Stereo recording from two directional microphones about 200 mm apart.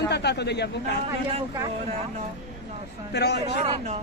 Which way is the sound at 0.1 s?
55° left (ahead or behind).